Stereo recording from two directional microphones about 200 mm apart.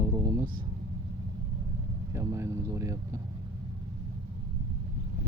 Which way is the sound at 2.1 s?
15° right (ahead or behind).